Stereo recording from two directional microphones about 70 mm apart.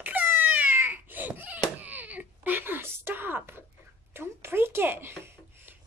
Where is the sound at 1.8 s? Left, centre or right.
Right.